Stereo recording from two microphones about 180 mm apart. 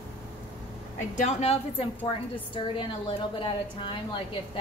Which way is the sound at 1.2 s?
35° left (ahead or behind).